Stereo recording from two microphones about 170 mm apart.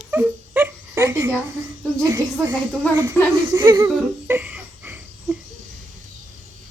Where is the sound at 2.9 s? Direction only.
15° right (ahead or behind).